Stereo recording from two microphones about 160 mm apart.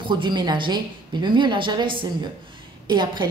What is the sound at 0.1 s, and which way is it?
A woman's voice, 30° right (ahead or behind).